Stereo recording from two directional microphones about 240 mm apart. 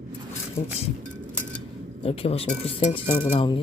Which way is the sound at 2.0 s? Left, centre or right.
Left.